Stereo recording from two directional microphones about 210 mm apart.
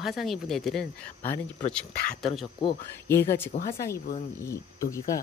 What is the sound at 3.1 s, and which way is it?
Speech, 10° left (ahead or behind).